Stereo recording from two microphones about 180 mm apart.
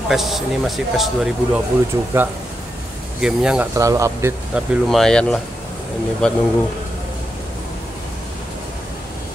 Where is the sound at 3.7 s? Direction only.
15° right (ahead or behind).